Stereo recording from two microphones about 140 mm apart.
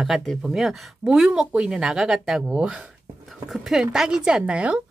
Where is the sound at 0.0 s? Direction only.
Centre (ahead or behind).